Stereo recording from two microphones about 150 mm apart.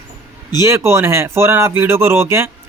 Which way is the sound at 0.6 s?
20° right (ahead or behind).